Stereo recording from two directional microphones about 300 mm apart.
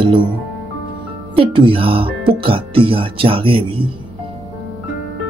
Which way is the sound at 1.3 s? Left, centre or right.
Centre.